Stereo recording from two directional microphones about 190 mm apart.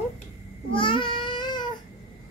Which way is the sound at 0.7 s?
25° left (ahead or behind).